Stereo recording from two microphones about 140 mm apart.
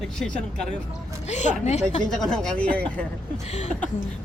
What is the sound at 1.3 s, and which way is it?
Speech, 55° left (ahead or behind).